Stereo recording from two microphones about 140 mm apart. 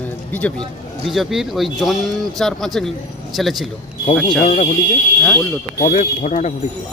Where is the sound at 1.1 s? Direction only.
Centre (ahead or behind).